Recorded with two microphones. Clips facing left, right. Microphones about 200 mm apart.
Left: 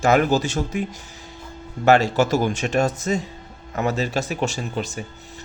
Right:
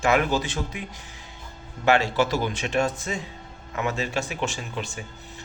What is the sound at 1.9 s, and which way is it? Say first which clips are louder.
A man's voice: left 5 dB; 45° left (ahead or behind).